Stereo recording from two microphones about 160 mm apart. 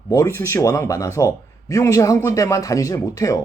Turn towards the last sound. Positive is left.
turn(degrees=20)  # may be behind; listen again after turning